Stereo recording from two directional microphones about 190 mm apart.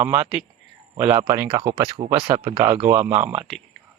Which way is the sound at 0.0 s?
10° right (ahead or behind).